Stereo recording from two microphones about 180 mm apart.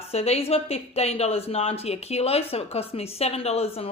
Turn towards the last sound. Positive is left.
turn(degrees=35)  # may be behind; listen again after turning